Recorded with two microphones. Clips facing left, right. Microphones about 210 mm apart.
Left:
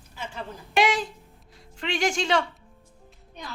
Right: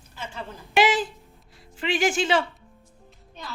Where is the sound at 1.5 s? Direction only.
5° right (ahead or behind).